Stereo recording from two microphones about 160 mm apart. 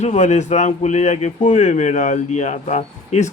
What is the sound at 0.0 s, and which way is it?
Speech, 45° left (ahead or behind).